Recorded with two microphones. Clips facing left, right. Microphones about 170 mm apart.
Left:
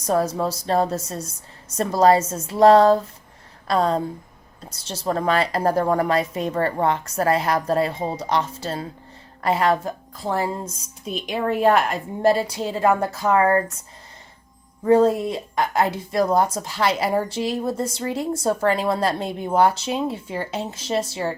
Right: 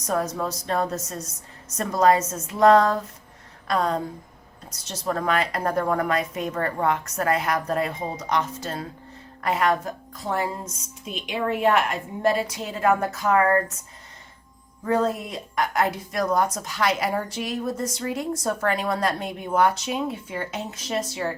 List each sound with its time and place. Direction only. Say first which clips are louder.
0.0 s a woman's voice: left 4 dB; 30° left (ahead or behind)
14.8 s a woman's voice: left 7 dB; 30° left (ahead or behind)